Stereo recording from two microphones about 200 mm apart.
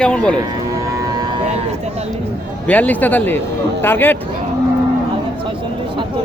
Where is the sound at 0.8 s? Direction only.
15° right (ahead or behind).